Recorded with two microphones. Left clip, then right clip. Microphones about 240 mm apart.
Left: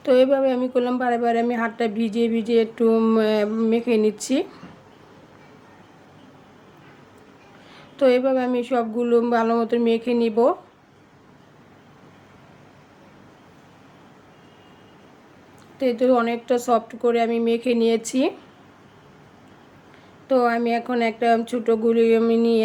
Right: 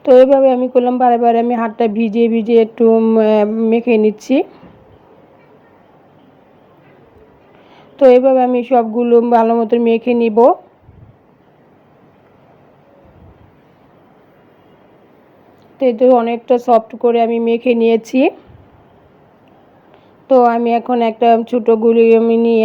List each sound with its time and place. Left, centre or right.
0.0 s speech: centre
7.8 s speech: centre
15.8 s speech: centre
20.2 s speech: centre